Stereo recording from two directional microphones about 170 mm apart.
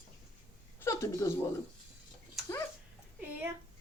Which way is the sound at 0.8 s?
15° left (ahead or behind).